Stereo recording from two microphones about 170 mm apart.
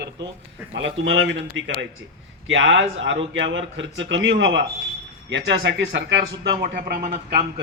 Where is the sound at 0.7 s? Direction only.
90° right; by 7.1 s 60° right (ahead or behind).